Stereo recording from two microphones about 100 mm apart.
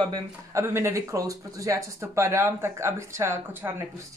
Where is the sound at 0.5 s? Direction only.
25° right (ahead or behind).